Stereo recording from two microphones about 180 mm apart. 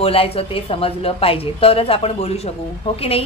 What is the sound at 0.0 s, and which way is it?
A woman's voice, 30° left (ahead or behind).